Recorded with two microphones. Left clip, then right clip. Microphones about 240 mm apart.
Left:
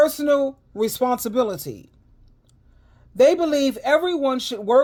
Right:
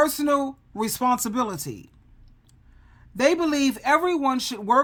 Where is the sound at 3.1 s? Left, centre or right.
Centre.